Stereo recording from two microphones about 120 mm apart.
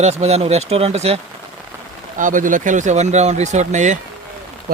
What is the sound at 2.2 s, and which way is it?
Speech, 90° right.